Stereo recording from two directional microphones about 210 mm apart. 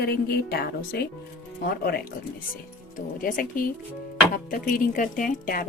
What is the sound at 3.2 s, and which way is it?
Speech, 40° left (ahead or behind).